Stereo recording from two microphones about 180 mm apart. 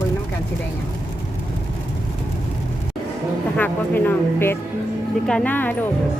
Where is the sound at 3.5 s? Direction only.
10° left (ahead or behind).